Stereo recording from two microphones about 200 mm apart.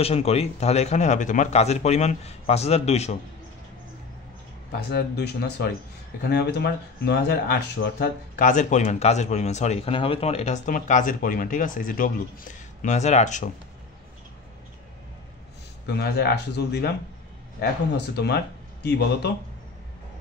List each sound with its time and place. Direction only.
0.0 s speech: 30° left (ahead or behind)
4.7 s speech: 55° left (ahead or behind); by 13.5 s 35° left (ahead or behind)
15.9 s speech: 55° left (ahead or behind)